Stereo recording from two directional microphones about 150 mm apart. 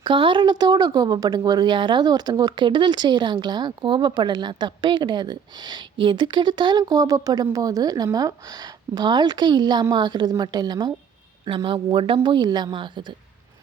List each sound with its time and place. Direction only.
0.0 s a woman's voice: 35° right (ahead or behind)